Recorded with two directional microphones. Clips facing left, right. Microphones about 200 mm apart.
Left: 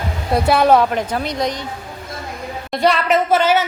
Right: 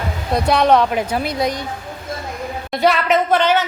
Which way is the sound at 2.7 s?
Centre (ahead or behind).